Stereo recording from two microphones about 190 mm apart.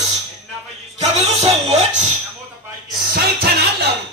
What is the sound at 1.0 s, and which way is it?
Music, 35° right (ahead or behind).